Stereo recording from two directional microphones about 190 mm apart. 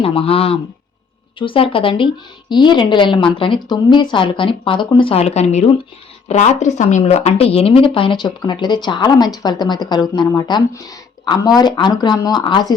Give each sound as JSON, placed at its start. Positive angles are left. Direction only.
{"t": 0.0, "sound": "speech", "side_deg": 30}